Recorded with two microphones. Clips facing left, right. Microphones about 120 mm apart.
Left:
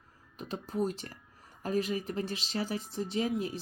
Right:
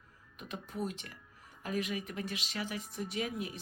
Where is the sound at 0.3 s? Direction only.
35° left (ahead or behind).